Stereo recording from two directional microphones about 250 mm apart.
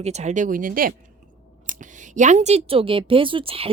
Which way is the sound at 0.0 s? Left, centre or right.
Right.